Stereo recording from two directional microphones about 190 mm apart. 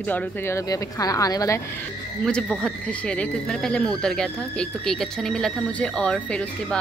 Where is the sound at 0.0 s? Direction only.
10° left (ahead or behind).